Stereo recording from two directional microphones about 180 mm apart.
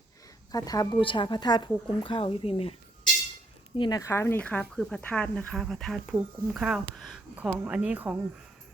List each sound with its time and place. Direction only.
0.5 s speech: 20° left (ahead or behind)
3.8 s speech: 20° left (ahead or behind); by 8.1 s 5° right (ahead or behind)